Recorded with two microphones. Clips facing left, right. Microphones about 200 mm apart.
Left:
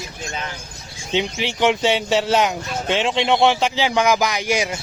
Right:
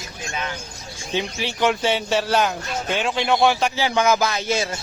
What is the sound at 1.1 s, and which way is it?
Speech, 20° left (ahead or behind).